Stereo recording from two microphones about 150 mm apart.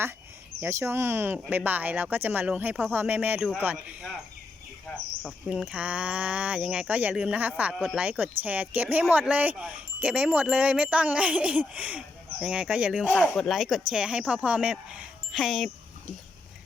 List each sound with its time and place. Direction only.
0.6 s speech: 15° right (ahead or behind)
5.2 s speech: 5° right (ahead or behind)